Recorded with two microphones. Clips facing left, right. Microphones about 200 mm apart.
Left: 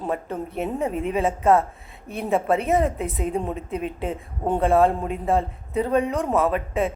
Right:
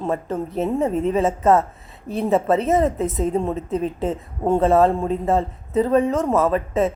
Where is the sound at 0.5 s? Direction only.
35° right (ahead or behind).